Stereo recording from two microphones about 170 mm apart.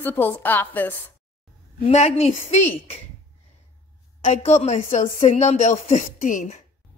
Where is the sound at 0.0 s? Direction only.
10° left (ahead or behind).